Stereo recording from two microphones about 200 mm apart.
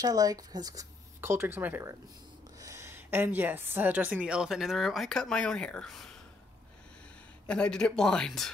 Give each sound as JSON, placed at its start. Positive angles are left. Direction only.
{"t": 0.0, "sound": "a woman's voice", "side_deg": -20}
{"t": 7.4, "sound": "a woman's voice", "side_deg": 5}